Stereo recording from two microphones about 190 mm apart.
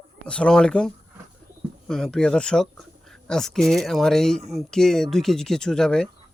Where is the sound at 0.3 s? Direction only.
5° left (ahead or behind).